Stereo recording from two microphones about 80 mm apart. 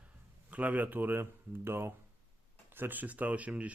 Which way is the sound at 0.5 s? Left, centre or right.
Centre.